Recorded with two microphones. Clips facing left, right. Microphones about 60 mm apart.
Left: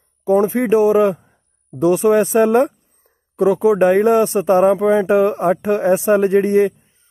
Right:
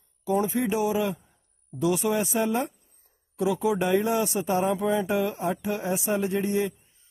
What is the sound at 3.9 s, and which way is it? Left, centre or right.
Speech, left.